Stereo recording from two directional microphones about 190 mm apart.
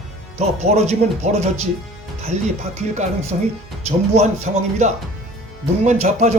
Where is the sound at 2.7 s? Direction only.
35° right (ahead or behind).